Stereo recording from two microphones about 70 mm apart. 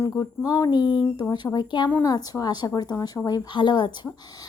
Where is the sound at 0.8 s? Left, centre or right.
Centre.